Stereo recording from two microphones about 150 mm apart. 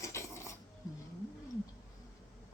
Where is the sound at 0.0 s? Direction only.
20° left (ahead or behind).